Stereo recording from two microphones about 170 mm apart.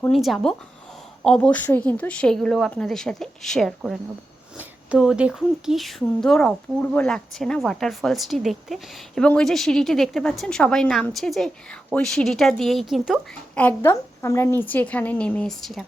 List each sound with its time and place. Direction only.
0.0 s speech: centre (ahead or behind)
13.6 s a woman's voice: 15° left (ahead or behind)